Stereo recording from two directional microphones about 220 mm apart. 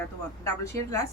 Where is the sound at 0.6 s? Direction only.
15° left (ahead or behind).